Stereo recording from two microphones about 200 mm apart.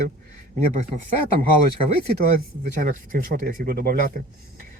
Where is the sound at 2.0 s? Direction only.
50° right (ahead or behind).